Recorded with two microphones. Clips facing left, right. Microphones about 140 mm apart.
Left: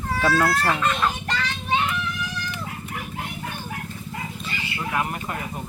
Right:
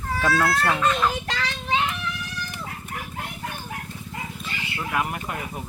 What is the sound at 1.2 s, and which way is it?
Vehicle, 90° right.